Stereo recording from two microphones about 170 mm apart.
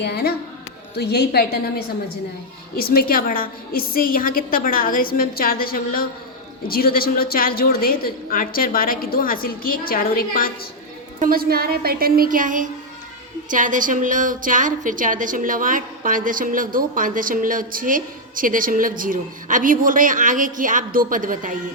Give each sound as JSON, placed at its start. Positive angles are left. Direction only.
{"t": 0.0, "sound": "a woman's voice", "side_deg": 70}
{"t": 2.7, "sound": "a woman's voice", "side_deg": 60}
{"t": 11.2, "sound": "a woman's voice", "side_deg": -60}